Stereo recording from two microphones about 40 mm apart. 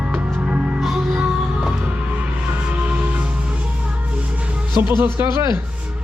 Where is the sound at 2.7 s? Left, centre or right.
Right.